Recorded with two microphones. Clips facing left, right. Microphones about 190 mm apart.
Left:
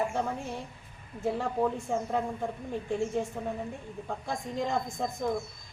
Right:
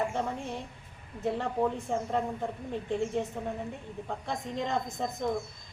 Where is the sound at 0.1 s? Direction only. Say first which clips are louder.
Left 1 dB; 5° left (ahead or behind).